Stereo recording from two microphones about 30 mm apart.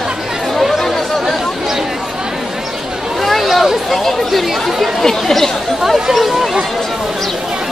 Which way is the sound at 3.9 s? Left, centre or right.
Centre.